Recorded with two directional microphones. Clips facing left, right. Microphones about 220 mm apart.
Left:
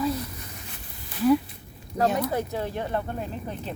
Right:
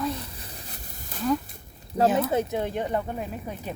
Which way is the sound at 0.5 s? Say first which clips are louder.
Even; 35° right (ahead or behind).